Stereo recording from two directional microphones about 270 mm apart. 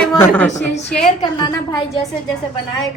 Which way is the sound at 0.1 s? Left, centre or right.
Centre.